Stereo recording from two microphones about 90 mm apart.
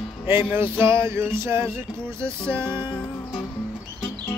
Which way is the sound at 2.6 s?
65° left (ahead or behind).